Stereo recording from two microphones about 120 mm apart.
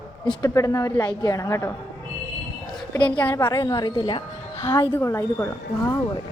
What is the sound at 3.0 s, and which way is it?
Speech, 10° left (ahead or behind).